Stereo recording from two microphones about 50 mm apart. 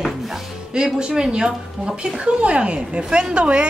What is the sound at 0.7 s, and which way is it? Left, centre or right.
Speech, centre.